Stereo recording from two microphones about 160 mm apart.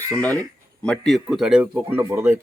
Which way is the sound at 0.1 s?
10° left (ahead or behind).